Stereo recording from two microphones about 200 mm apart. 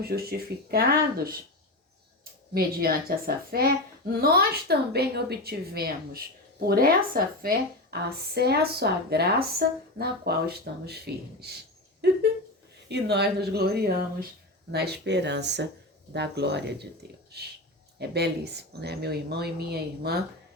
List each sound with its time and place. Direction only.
0.0 s speech: 50° right (ahead or behind)
2.5 s speech: 50° right (ahead or behind)